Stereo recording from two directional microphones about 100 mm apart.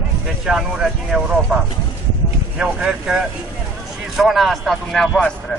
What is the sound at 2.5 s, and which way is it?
Speech, 10° right (ahead or behind).